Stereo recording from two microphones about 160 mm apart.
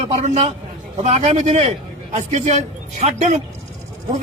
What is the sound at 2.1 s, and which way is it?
A man's voice, 45° right (ahead or behind).